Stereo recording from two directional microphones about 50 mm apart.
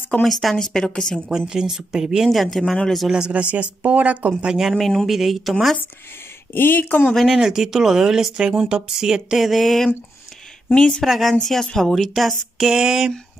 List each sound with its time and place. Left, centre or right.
0.2 s speech: centre
1.3 s speech: centre
2.6 s speech: centre
3.1 s speech: centre
4.7 s a woman's voice: centre
6.5 s speech: left
7.2 s speech: centre
9.5 s a woman's voice: centre
10.7 s a woman's voice: centre
11.1 s a woman's voice: centre
11.9 s speech: centre